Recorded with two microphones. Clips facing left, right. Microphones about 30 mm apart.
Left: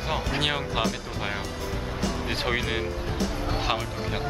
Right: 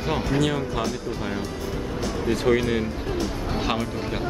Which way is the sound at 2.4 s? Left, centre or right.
Centre.